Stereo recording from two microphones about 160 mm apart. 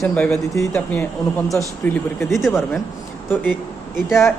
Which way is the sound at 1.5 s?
Centre (ahead or behind).